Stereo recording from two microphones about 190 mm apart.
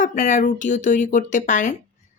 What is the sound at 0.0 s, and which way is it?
A woman's voice, 40° left (ahead or behind).